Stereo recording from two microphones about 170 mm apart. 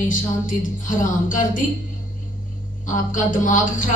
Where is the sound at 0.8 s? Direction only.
50° left (ahead or behind).